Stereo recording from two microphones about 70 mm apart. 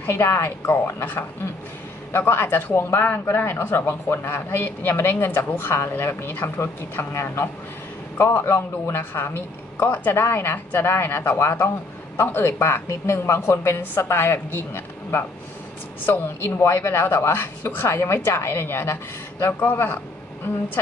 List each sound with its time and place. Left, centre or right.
0.0 s a man's voice: left